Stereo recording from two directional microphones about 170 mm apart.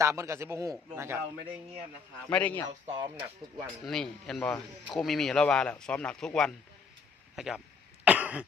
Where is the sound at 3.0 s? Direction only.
30° right (ahead or behind).